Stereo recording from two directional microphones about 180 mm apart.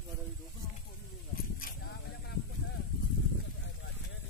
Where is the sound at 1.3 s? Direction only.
50° left (ahead or behind).